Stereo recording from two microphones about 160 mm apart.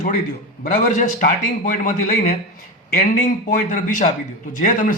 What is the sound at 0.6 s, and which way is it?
A man's voice, 50° left (ahead or behind).